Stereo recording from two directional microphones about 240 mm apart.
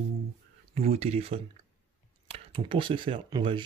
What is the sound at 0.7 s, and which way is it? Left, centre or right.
Speech, right.